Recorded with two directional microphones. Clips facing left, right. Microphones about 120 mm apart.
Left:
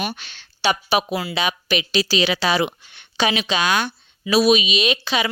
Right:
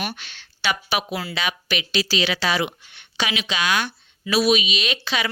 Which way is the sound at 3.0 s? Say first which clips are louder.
Left 6 dB; 35° left (ahead or behind).